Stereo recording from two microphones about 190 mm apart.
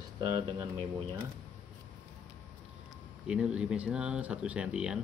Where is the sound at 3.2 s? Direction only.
5° right (ahead or behind).